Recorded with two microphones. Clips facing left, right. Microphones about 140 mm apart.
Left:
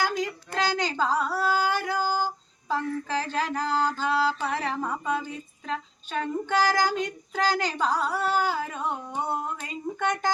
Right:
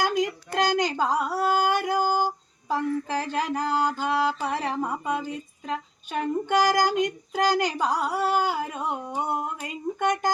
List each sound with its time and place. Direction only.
0.0 s a sound: 15° right (ahead or behind)
0.6 s a woman's voice: 15° right (ahead or behind)
1.6 s music: 15° right (ahead or behind)
2.1 s female singing: 15° right (ahead or behind)